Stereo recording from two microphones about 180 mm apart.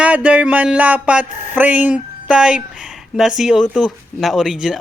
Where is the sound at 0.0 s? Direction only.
5° right (ahead or behind).